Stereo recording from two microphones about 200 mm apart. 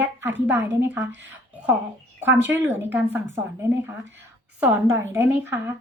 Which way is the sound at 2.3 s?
10° right (ahead or behind).